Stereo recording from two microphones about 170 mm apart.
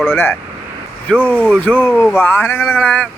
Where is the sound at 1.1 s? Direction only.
10° right (ahead or behind).